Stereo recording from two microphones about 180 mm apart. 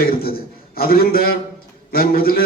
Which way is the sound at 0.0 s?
55° left (ahead or behind).